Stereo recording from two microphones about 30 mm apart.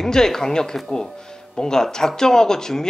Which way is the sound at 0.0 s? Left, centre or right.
Centre.